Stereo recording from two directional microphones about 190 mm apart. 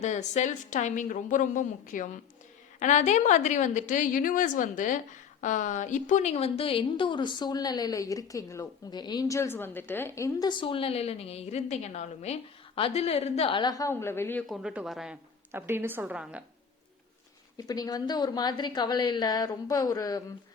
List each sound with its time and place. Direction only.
0.0 s a woman's voice: 40° left (ahead or behind); by 14.4 s 10° left (ahead or behind)
14.4 s a woman's voice: centre (ahead or behind)
17.6 s a woman's voice: 20° left (ahead or behind)